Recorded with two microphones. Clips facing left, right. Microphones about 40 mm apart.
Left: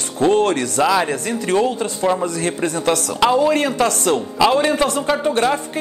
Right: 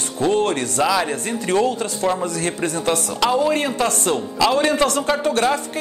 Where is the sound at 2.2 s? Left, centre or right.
Left.